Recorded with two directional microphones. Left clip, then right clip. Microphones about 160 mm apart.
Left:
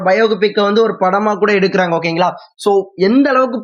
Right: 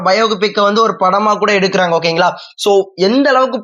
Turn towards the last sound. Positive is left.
turn(degrees=15)  # may be behind; listen again after turning